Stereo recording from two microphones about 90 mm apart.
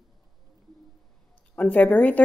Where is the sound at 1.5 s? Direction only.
15° left (ahead or behind).